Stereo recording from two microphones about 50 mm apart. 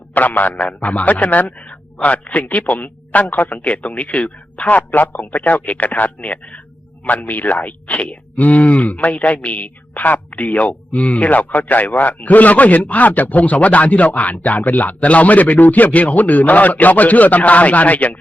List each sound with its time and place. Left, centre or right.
0.1 s a man's voice: left